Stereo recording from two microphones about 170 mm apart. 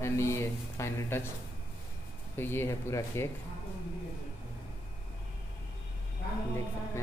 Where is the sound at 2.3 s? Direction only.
15° left (ahead or behind).